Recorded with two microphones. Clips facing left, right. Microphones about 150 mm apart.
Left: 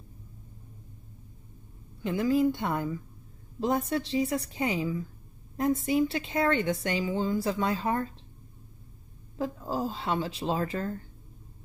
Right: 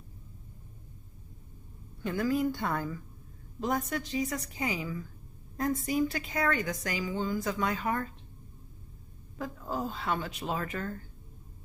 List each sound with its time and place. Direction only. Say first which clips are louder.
2.0 s a woman's voice: left 4 dB; 25° left (ahead or behind)
9.4 s a woman's voice: left 4 dB; 30° left (ahead or behind)